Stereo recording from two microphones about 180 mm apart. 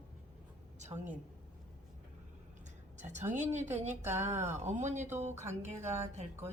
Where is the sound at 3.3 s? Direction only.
40° right (ahead or behind).